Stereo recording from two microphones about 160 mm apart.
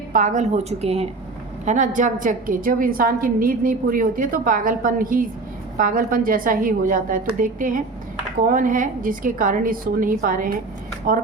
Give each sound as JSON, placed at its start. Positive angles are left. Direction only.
{"t": 0.1, "sound": "a woman's voice", "side_deg": -50}
{"t": 1.6, "sound": "a woman's voice", "side_deg": -50}